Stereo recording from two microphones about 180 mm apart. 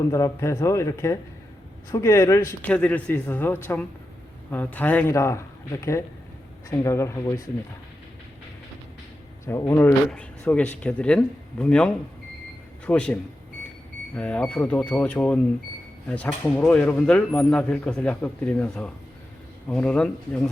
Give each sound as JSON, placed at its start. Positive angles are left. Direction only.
{"t": 0.1, "sound": "speech", "side_deg": 15}
{"t": 9.5, "sound": "speech", "side_deg": 15}
{"t": 14.2, "sound": "speech", "side_deg": 5}